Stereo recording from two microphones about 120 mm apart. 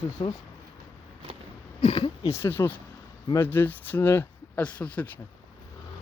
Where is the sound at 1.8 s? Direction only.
55° left (ahead or behind).